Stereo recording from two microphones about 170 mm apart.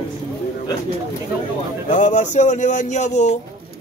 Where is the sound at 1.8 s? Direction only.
50° left (ahead or behind).